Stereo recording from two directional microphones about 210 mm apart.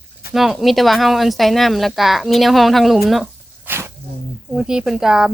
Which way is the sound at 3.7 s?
10° right (ahead or behind).